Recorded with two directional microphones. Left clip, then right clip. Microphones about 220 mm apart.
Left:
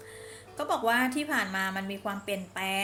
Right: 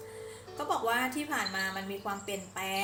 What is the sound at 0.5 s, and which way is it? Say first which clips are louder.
A woman's voice: left 3 dB; 45° left (ahead or behind).